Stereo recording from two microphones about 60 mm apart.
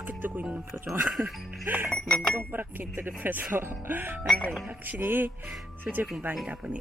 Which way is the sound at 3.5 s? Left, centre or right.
Right.